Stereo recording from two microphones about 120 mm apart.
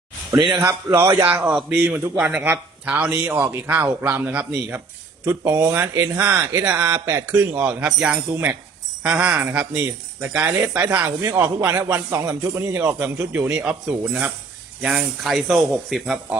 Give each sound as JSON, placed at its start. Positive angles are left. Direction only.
{"t": 0.3, "sound": "speech", "side_deg": -35}
{"t": 0.9, "sound": "speech", "side_deg": -25}
{"t": 1.3, "sound": "a man's voice", "side_deg": -5}
{"t": 5.2, "sound": "a man's voice", "side_deg": -30}